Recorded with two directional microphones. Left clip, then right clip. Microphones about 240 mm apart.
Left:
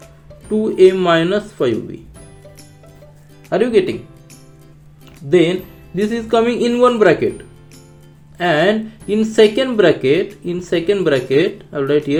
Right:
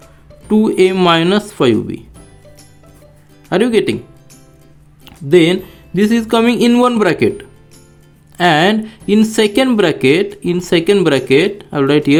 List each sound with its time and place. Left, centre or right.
0.5 s speech: right
3.5 s speech: right
5.0 s speech: right
8.4 s speech: right